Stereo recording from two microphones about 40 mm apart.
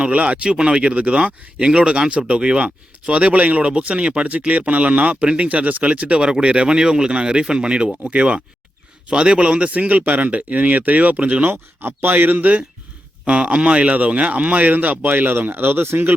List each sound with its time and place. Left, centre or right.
0.0 s a man's voice: right
6.1 s a man's voice: right
11.4 s speech: right
13.2 s a man's voice: right